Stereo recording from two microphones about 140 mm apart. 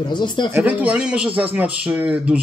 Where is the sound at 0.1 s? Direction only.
35° left (ahead or behind).